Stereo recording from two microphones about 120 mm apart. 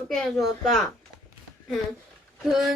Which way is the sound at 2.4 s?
Centre (ahead or behind).